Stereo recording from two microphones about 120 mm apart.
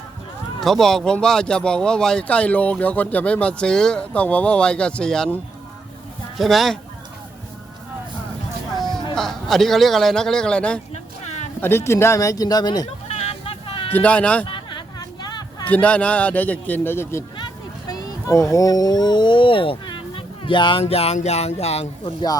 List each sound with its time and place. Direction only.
0.6 s a man's voice: centre (ahead or behind)
9.1 s a man's voice: 5° left (ahead or behind)
10.9 s a sound: 70° left (ahead or behind)
11.6 s speech: 20° left (ahead or behind)
13.1 s a sound: 60° left (ahead or behind)
13.9 s speech: 10° left (ahead or behind)
14.4 s a sound: 40° left (ahead or behind)
15.6 s speech: 10° left (ahead or behind); by 20.8 s 45° left (ahead or behind)
20.8 s speech: 60° left (ahead or behind)